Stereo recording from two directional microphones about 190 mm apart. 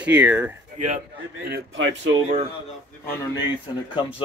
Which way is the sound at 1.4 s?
75° right (ahead or behind).